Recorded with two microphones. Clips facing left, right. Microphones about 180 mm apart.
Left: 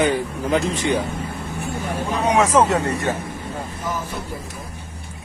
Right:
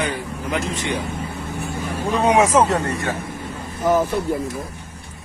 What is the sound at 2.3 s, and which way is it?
Speech, 15° right (ahead or behind).